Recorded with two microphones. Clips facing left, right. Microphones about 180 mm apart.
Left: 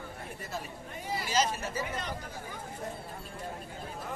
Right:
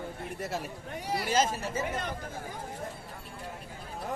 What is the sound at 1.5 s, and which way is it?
Speech, 30° right (ahead or behind).